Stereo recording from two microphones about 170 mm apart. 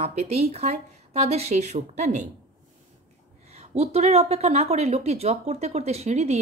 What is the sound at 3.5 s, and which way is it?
Speech, 40° right (ahead or behind).